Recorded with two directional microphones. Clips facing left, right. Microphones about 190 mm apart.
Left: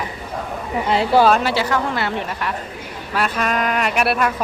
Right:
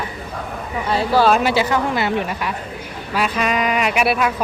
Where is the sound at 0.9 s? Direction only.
25° left (ahead or behind).